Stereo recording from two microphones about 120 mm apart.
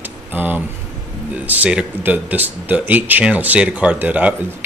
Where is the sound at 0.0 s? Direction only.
15° right (ahead or behind).